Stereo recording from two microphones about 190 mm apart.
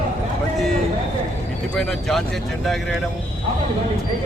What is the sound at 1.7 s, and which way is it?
Speech, centre (ahead or behind).